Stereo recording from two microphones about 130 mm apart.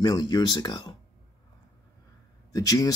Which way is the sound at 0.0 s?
35° left (ahead or behind).